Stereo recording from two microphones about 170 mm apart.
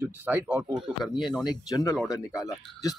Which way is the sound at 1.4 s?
20° left (ahead or behind).